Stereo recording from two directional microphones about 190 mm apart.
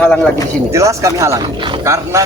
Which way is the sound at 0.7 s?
15° right (ahead or behind).